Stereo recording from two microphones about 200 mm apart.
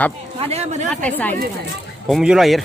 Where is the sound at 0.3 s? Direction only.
30° right (ahead or behind).